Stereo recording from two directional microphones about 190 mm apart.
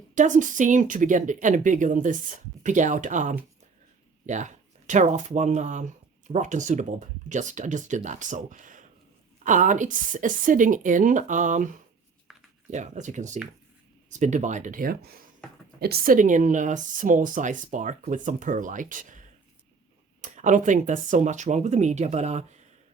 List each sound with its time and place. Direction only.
0.1 s speech: 40° right (ahead or behind)
12.7 s speech: 40° right (ahead or behind)
20.2 s speech: 40° right (ahead or behind)